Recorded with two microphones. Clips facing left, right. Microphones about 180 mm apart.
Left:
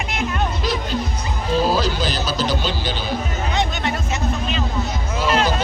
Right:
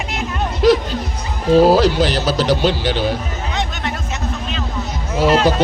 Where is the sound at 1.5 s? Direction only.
75° right (ahead or behind).